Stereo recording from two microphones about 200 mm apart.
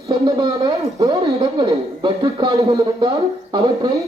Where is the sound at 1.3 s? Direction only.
30° right (ahead or behind).